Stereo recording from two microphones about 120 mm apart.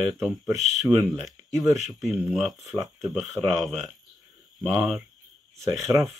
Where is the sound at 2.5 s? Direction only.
25° right (ahead or behind).